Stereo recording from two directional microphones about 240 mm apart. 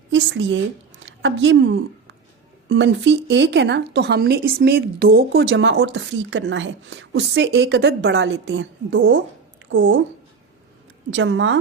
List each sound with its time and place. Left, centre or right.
0.1 s a woman's voice: right
11.1 s speech: right